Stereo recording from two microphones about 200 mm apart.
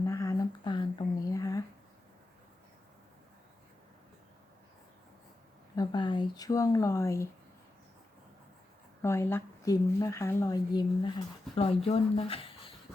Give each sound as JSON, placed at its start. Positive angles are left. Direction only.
{"t": 0.0, "sound": "a sound", "side_deg": 15}
{"t": 5.7, "sound": "speech", "side_deg": 20}
{"t": 9.0, "sound": "speech", "side_deg": 10}